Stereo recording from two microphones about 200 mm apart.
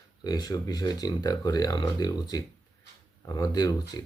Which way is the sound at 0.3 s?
20° left (ahead or behind).